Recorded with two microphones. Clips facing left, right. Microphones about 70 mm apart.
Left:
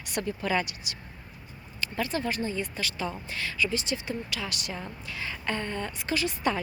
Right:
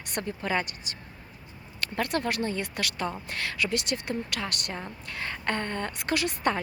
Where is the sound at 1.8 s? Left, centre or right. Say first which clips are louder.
Right 1 dB; right.